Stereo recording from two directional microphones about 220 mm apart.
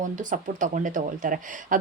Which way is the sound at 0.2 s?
35° right (ahead or behind).